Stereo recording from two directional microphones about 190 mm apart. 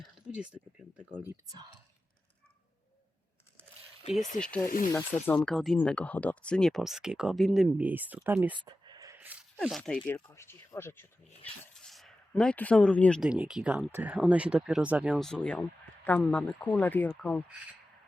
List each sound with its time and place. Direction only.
1.2 s speech: 15° right (ahead or behind)
4.4 s speech: 5° left (ahead or behind)
8.5 s a sound: 25° right (ahead or behind)
9.6 s speech: centre (ahead or behind)